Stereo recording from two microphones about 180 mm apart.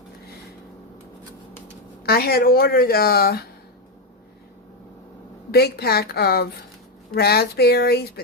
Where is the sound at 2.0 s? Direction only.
60° left (ahead or behind).